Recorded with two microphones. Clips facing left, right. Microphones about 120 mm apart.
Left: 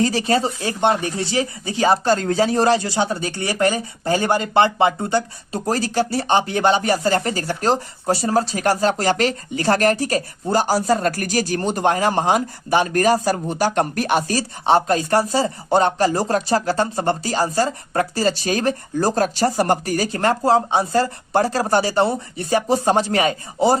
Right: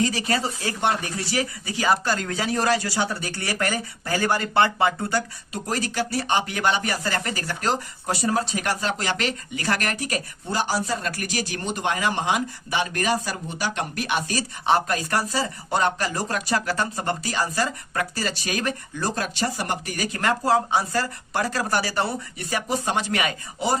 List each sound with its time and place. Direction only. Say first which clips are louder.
0.0 s speech: left 5 dB; 35° left (ahead or behind)
5.5 s speech: left 6 dB; 35° left (ahead or behind)